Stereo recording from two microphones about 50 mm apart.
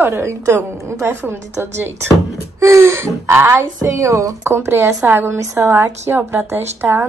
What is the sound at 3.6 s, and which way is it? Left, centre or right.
Speech, right.